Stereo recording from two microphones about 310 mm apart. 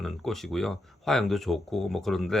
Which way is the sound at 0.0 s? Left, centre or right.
Centre.